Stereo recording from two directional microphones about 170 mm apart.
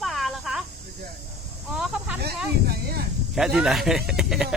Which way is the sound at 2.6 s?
65° right (ahead or behind).